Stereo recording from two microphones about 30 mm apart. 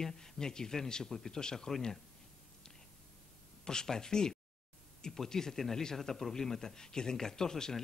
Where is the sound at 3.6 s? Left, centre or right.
Left.